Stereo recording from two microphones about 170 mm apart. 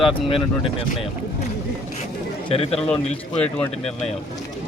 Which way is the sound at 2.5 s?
35° left (ahead or behind).